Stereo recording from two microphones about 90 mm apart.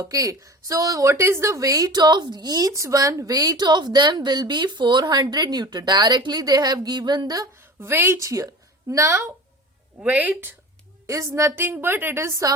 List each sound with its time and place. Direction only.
0.0 s a woman's voice: 40° right (ahead or behind)
7.8 s a woman's voice: 25° right (ahead or behind)
10.0 s speech: 15° right (ahead or behind)
11.0 s a woman's voice: 35° right (ahead or behind)